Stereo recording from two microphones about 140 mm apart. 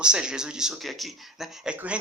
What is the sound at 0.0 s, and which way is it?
Speech, 5° right (ahead or behind).